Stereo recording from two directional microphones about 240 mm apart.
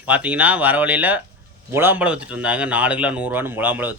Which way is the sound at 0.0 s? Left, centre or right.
Centre.